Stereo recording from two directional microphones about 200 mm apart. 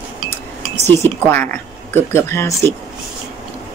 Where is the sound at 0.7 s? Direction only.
35° right (ahead or behind).